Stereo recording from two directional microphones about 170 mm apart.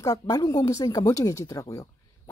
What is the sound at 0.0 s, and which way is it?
Speech, 20° left (ahead or behind).